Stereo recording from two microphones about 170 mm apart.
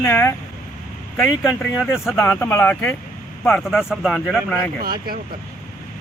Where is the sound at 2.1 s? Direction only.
15° left (ahead or behind).